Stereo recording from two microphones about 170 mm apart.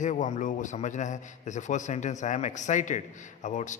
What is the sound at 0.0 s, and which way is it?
A man's voice, 45° left (ahead or behind).